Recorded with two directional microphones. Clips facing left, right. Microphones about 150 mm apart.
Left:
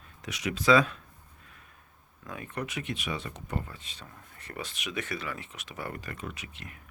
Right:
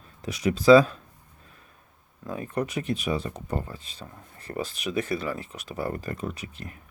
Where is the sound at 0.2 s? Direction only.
35° right (ahead or behind).